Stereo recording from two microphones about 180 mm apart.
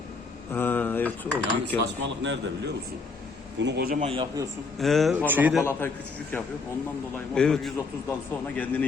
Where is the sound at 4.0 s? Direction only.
30° right (ahead or behind).